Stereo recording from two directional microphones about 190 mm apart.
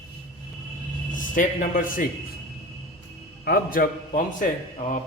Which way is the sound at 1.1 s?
45° left (ahead or behind).